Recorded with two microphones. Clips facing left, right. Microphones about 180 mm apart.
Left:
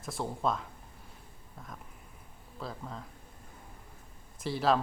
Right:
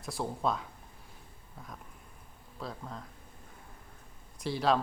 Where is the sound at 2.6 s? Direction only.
Centre (ahead or behind).